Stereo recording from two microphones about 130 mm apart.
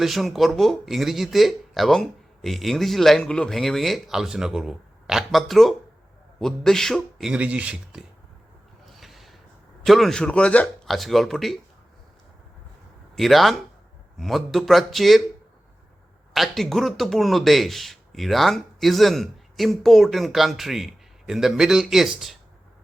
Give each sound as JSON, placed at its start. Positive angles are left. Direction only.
{"t": 0.0, "sound": "speech", "side_deg": 0}
{"t": 7.3, "sound": "speech", "side_deg": -10}
{"t": 9.0, "sound": "a sound", "side_deg": 0}
{"t": 9.8, "sound": "speech", "side_deg": 0}
{"t": 13.1, "sound": "speech", "side_deg": 0}
{"t": 16.3, "sound": "speech", "side_deg": 0}